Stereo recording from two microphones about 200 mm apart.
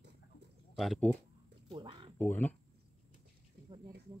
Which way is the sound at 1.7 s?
25° right (ahead or behind).